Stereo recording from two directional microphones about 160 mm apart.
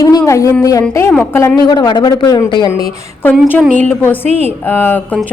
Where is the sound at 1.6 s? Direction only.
25° left (ahead or behind).